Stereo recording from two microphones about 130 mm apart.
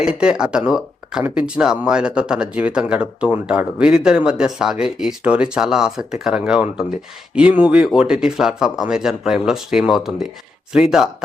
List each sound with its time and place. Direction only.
0.0 s speech: 5° right (ahead or behind)